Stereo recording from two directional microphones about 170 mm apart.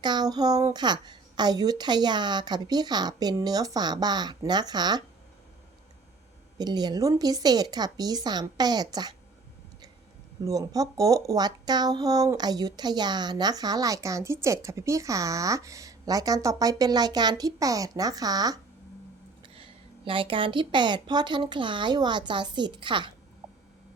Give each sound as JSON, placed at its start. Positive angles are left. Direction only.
{"t": 0.0, "sound": "speech", "side_deg": -25}
{"t": 6.6, "sound": "speech", "side_deg": -25}
{"t": 10.4, "sound": "speech", "side_deg": -20}
{"t": 20.1, "sound": "speech", "side_deg": -30}